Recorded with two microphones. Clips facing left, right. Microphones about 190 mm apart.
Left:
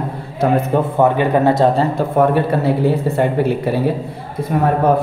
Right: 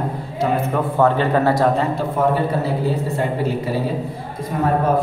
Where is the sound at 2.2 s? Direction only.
65° left (ahead or behind).